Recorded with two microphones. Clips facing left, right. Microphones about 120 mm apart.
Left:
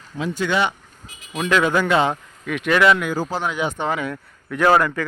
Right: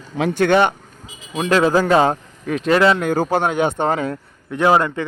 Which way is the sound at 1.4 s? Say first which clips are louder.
Right 3 dB; 35° right (ahead or behind).